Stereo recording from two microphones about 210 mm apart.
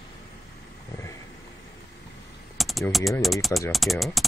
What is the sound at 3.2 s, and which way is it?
Speech, centre (ahead or behind).